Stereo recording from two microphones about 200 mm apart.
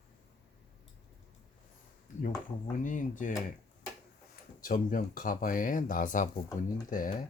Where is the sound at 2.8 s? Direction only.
40° left (ahead or behind).